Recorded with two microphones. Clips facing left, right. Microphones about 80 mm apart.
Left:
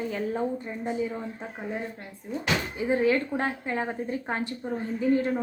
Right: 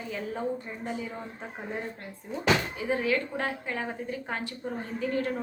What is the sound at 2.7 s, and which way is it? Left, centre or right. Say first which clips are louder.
A woman's voice: left 4 dB; left.